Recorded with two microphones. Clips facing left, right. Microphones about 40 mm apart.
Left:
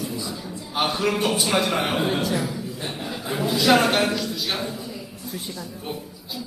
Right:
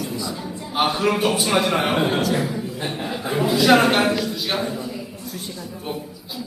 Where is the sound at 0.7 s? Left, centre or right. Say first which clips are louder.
Right 3 dB; centre.